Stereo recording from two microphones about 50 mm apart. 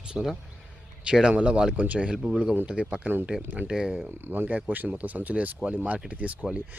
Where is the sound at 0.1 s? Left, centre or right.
Centre.